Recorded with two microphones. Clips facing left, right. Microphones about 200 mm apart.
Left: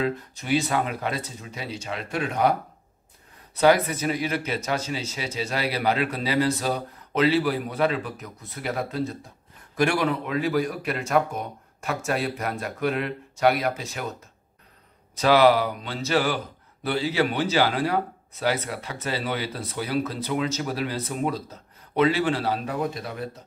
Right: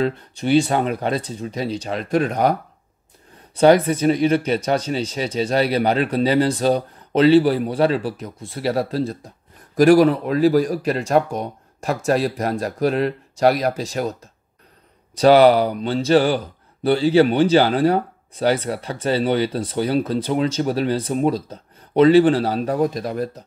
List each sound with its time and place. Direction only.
0.0 s speech: 30° right (ahead or behind)
3.5 s speech: 30° right (ahead or behind)
15.1 s speech: 35° right (ahead or behind)